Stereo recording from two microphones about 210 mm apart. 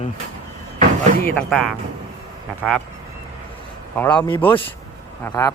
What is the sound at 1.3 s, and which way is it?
Speech, centre (ahead or behind).